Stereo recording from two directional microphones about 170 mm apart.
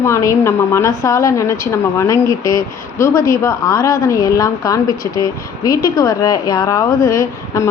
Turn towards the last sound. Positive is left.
turn(degrees=20)  # may be behind; listen again after turning